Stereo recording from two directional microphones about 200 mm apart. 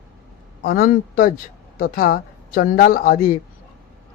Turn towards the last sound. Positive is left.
turn(degrees=45)  # may be behind; listen again after turning